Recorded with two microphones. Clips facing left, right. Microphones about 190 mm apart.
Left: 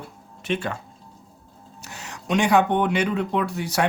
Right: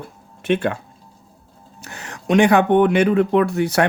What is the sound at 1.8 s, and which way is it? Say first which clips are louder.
Speech: right 8 dB; 55° right (ahead or behind).